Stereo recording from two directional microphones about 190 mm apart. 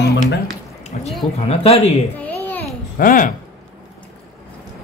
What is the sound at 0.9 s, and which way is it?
Speech, 40° left (ahead or behind).